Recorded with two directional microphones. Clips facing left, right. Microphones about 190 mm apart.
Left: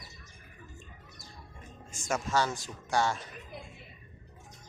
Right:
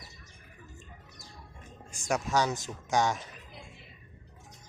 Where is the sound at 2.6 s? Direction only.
20° right (ahead or behind).